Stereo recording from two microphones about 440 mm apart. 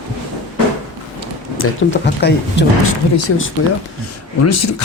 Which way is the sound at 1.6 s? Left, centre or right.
Left.